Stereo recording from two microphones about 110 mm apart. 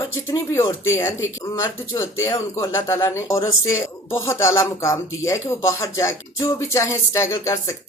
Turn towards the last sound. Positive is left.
turn(degrees=25)  # may be behind; listen again after turning